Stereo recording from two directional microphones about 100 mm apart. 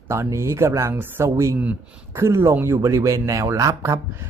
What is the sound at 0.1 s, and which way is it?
Speech, 30° right (ahead or behind).